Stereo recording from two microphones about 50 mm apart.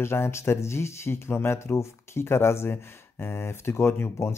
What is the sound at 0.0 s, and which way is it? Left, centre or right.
Speech, left.